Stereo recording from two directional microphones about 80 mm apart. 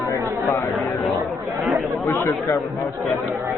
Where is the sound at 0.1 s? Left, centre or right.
Left.